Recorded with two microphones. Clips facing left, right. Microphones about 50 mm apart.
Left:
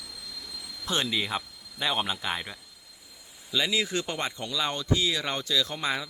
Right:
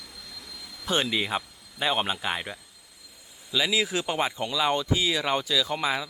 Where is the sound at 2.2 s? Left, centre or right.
Centre.